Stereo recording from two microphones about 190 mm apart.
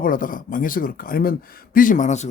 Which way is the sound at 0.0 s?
45° left (ahead or behind).